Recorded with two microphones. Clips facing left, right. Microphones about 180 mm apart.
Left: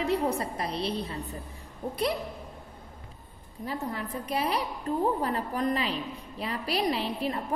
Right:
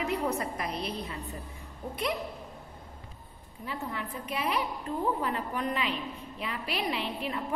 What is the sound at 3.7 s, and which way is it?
A woman's voice, 40° left (ahead or behind).